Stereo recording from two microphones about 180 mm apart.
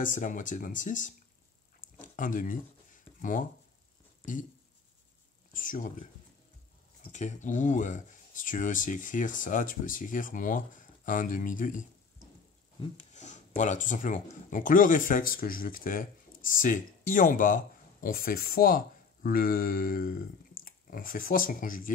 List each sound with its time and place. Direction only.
0.0 s speech: 45° left (ahead or behind)
1.8 s a sound: 45° left (ahead or behind)
5.5 s speech: 45° left (ahead or behind)
7.1 s speech: 40° left (ahead or behind)
12.9 s speech: 40° left (ahead or behind)